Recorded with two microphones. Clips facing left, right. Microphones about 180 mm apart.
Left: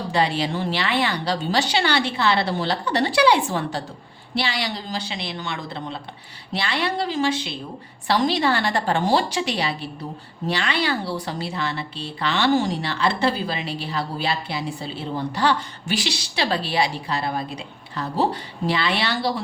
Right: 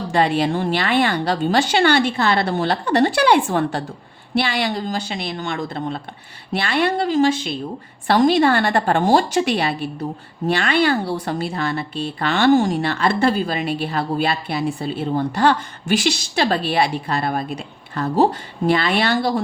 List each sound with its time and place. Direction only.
0.1 s a woman's voice: 50° right (ahead or behind)